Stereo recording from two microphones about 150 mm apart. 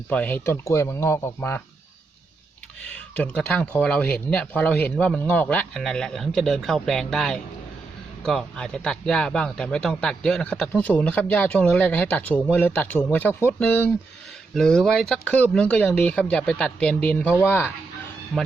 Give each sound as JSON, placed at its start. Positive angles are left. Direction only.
{"t": 0.1, "sound": "a man's voice", "side_deg": 10}
{"t": 2.8, "sound": "a man's voice", "side_deg": 10}
{"t": 18.3, "sound": "speech", "side_deg": 0}